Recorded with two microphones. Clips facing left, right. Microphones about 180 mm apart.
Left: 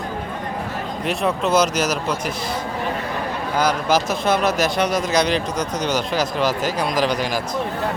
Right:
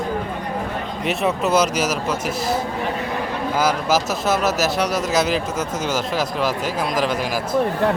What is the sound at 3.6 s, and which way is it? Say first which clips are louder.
Speech: left 1 dB; 5° right (ahead or behind).